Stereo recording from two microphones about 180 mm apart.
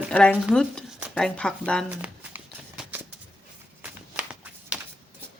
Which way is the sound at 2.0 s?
10° right (ahead or behind).